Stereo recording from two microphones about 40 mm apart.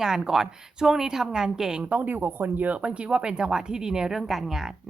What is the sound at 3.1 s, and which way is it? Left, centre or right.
Speech, right.